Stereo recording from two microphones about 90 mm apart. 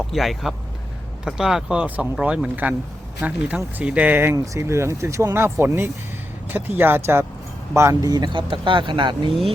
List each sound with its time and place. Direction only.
0.1 s speech: centre (ahead or behind); by 7.9 s 30° right (ahead or behind)
8.0 s speech: 45° right (ahead or behind)